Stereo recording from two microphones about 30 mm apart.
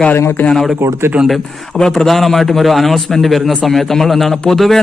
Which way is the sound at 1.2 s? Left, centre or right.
Right.